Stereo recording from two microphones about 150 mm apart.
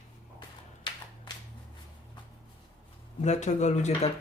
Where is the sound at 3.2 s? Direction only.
50° left (ahead or behind).